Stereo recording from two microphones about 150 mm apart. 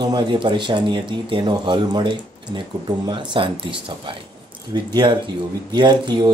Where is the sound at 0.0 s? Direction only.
30° right (ahead or behind).